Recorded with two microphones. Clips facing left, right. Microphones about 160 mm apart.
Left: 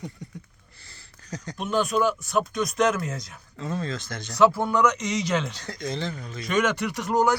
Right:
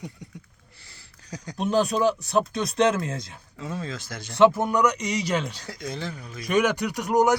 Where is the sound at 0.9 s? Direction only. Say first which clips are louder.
Left 2 dB; 10° right (ahead or behind).